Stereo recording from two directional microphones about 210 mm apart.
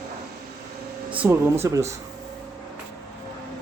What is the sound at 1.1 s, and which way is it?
Speech, 5° right (ahead or behind).